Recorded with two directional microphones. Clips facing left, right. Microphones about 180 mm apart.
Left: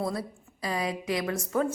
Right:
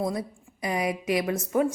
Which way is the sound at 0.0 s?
20° right (ahead or behind).